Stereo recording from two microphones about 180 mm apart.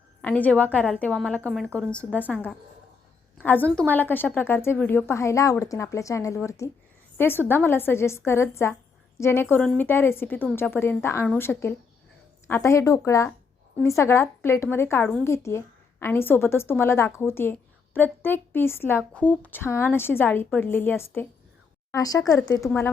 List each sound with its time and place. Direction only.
0.2 s a woman's voice: 10° left (ahead or behind)